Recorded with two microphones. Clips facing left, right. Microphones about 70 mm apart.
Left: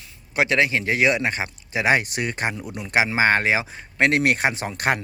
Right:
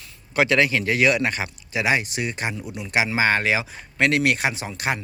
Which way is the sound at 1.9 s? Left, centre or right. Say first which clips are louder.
Left 2 dB; left.